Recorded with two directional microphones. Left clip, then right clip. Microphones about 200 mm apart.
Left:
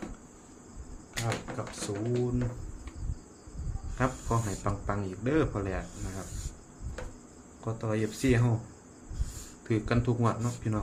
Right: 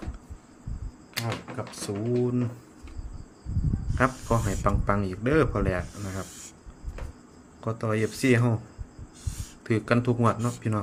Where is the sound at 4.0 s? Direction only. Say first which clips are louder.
Right 6 dB; 45° right (ahead or behind).